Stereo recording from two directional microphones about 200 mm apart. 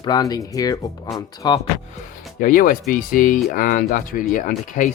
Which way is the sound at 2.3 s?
45° left (ahead or behind).